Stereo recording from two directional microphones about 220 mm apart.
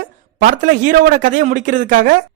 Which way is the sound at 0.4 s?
40° right (ahead or behind).